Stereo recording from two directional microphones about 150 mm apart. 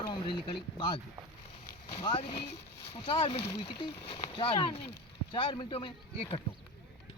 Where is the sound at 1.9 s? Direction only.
30° left (ahead or behind).